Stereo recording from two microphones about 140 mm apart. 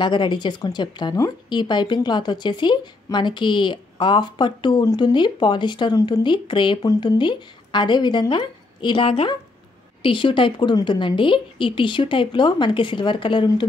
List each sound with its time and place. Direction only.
0.0 s speech: 35° left (ahead or behind)